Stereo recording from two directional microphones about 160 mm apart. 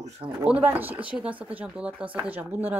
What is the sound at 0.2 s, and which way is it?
Speech, 30° right (ahead or behind).